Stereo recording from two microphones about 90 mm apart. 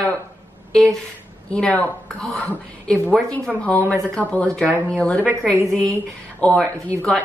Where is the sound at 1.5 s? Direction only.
15° left (ahead or behind).